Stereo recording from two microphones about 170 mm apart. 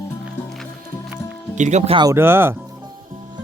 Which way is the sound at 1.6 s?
45° right (ahead or behind).